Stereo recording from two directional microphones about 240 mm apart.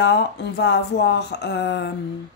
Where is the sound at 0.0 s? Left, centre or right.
Left.